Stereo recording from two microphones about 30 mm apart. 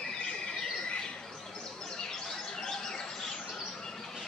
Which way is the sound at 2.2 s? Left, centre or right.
Centre.